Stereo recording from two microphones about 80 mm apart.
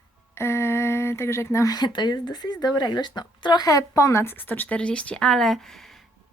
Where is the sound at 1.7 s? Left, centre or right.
Left.